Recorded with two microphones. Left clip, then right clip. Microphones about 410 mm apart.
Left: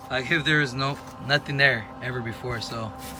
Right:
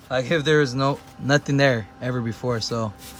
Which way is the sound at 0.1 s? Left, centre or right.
Centre.